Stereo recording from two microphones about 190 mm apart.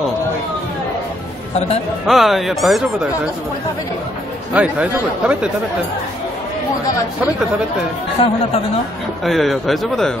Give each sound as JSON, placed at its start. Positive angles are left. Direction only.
{"t": 2.0, "sound": "speech", "side_deg": 0}
{"t": 4.6, "sound": "speech", "side_deg": -5}
{"t": 8.2, "sound": "speech", "side_deg": 30}
{"t": 9.2, "sound": "speech", "side_deg": 0}